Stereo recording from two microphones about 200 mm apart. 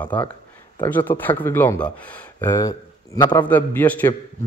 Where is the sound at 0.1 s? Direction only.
5° left (ahead or behind).